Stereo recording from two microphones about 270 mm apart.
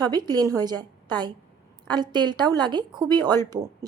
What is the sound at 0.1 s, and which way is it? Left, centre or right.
A woman's voice, centre.